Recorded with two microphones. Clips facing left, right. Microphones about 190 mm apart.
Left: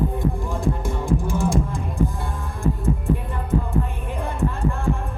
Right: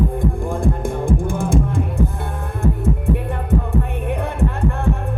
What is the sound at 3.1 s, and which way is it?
Music, 65° right (ahead or behind).